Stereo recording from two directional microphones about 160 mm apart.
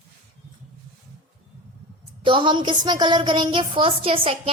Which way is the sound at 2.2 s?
30° right (ahead or behind).